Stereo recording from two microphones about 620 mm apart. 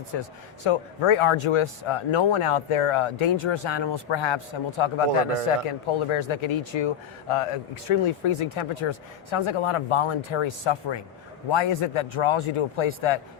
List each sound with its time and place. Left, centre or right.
0.7 s speech: left